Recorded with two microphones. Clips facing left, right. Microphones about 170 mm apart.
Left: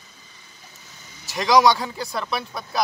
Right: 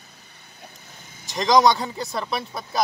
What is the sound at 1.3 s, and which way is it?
Speech, 5° left (ahead or behind).